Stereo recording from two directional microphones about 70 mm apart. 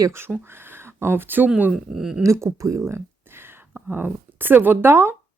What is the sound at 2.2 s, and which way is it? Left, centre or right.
Speech, right.